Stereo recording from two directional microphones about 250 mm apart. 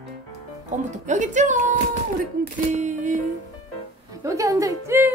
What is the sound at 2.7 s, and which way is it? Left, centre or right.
Speech, right.